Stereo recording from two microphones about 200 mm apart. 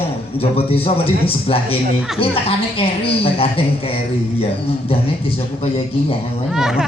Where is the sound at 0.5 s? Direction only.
30° left (ahead or behind).